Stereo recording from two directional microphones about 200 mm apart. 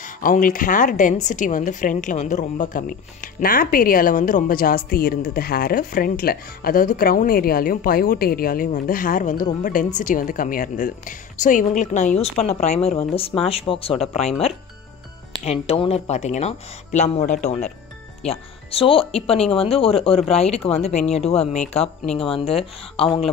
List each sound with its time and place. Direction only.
0.0 s a woman's voice: 40° left (ahead or behind)
15.4 s a woman's voice: 30° left (ahead or behind)